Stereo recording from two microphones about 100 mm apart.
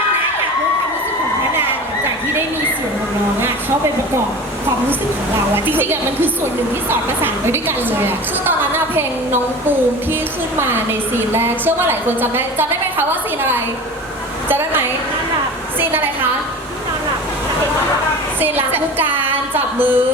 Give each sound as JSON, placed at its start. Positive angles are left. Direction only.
{"t": 5.5, "sound": "a woman's voice", "side_deg": -20}
{"t": 18.3, "sound": "a woman's voice", "side_deg": -20}